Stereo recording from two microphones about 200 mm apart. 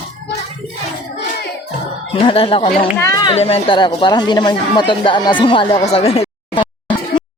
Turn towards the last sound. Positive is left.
turn(degrees=20)  # may be behind; listen again after turning